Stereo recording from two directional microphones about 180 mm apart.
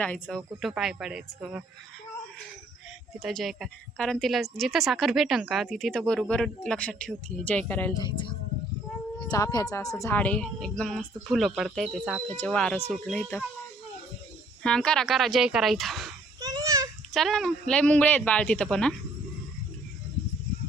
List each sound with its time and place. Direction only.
0.0 s a woman's voice: 5° left (ahead or behind)
3.2 s a woman's voice: centre (ahead or behind)
7.9 s speech: 25° left (ahead or behind)
9.3 s a woman's voice: 20° left (ahead or behind); by 13.2 s centre (ahead or behind)
14.6 s a woman's voice: 5° left (ahead or behind)
16.4 s a sound: 20° right (ahead or behind)
17.1 s a woman's voice: centre (ahead or behind)